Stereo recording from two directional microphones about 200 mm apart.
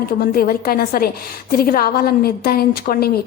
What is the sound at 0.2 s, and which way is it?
A woman's voice, 50° left (ahead or behind).